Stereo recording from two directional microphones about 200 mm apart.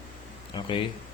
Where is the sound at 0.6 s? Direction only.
20° left (ahead or behind).